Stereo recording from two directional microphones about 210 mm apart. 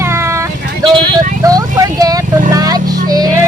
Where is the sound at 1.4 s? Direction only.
15° right (ahead or behind).